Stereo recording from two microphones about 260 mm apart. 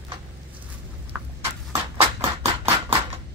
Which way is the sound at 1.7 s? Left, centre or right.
Right.